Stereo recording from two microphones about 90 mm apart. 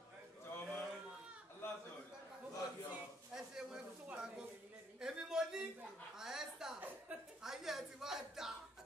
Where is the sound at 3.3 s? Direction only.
5° right (ahead or behind).